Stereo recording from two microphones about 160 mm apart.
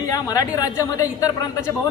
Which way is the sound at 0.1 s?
20° left (ahead or behind).